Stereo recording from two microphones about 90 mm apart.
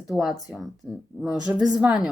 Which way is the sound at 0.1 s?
Centre (ahead or behind).